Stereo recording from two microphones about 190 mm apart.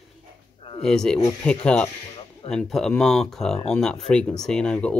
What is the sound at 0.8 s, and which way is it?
Speech, 5° left (ahead or behind).